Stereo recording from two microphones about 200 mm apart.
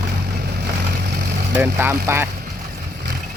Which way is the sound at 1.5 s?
10° right (ahead or behind).